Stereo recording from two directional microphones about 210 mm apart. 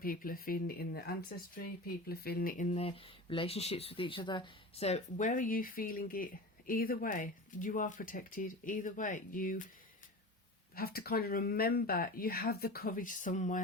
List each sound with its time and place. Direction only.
0.0 s speech: 45° left (ahead or behind)
10.8 s speech: 45° left (ahead or behind)